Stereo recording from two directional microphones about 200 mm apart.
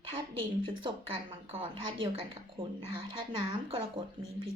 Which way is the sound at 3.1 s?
25° right (ahead or behind).